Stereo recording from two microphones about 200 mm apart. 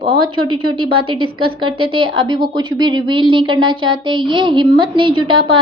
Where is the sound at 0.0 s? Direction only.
25° right (ahead or behind).